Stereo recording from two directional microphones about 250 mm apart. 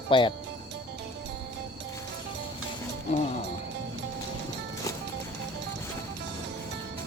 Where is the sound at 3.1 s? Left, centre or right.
Left.